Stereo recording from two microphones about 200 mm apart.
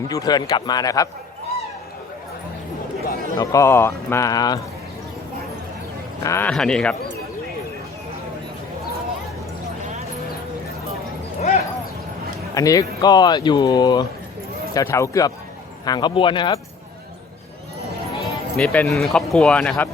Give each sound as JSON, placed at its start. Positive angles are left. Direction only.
{"t": 0.1, "sound": "speech", "side_deg": 20}
{"t": 3.3, "sound": "a man's voice", "side_deg": 15}
{"t": 6.2, "sound": "speech", "side_deg": 10}
{"t": 11.3, "sound": "clip-clop", "side_deg": 30}
{"t": 12.5, "sound": "a man's voice", "side_deg": 15}
{"t": 18.2, "sound": "speech", "side_deg": 0}